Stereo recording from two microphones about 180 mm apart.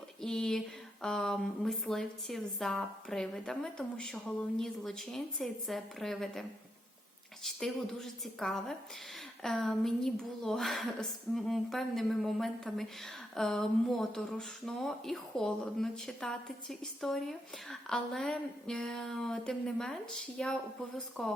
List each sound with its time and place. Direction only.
0.2 s speech: 5° left (ahead or behind)
7.4 s speech: centre (ahead or behind)